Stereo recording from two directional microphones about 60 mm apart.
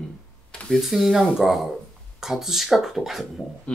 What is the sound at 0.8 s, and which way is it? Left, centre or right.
Speech, centre.